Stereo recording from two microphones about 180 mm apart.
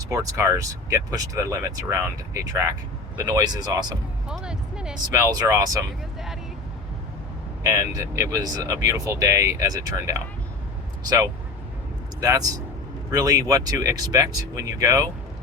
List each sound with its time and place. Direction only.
0.0 s speech: 20° right (ahead or behind)
4.3 s music: 5° right (ahead or behind)
5.1 s speech: 20° right (ahead or behind)
7.6 s speech: 15° right (ahead or behind)
12.2 s speech: 20° right (ahead or behind)